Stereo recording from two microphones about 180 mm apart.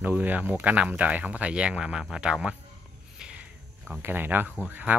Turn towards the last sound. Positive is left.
turn(degrees=-10)  # may be behind; listen again after turning